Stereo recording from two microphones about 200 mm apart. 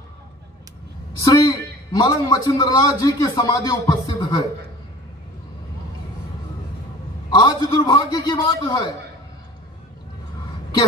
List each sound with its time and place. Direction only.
1.2 s a man's voice: 15° left (ahead or behind)
7.2 s a man's voice: 20° left (ahead or behind)